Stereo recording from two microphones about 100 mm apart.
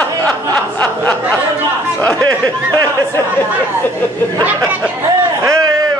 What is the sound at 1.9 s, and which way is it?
Speech, 15° left (ahead or behind).